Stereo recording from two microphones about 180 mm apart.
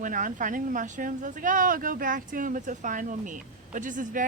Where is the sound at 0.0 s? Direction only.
45° right (ahead or behind).